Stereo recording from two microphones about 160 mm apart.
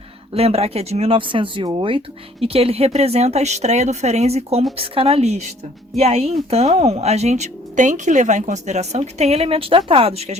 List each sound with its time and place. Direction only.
0.3 s speech: 40° right (ahead or behind)